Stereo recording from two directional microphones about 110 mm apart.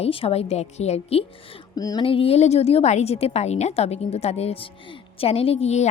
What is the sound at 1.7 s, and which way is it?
Speech, 35° left (ahead or behind).